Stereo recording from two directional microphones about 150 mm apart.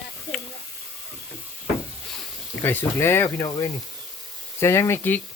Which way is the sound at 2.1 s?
10° left (ahead or behind).